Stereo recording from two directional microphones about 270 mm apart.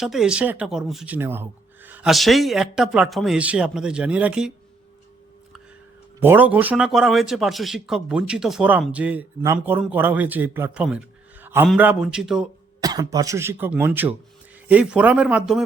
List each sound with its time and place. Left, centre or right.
0.0 s speech: centre
6.2 s speech: centre
12.8 s speech: centre